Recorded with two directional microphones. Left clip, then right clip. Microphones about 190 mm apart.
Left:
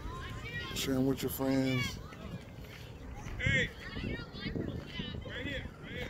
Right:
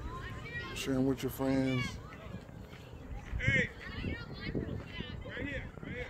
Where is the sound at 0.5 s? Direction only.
20° left (ahead or behind).